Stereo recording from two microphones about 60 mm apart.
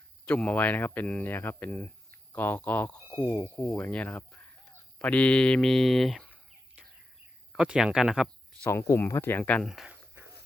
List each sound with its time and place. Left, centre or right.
0.3 s speech: left
3.3 s speech: left
5.0 s a sound: centre
5.6 s speech: centre
7.5 s speech: centre
8.7 s speech: left